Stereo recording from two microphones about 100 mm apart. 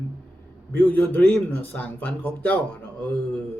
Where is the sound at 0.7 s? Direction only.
15° left (ahead or behind).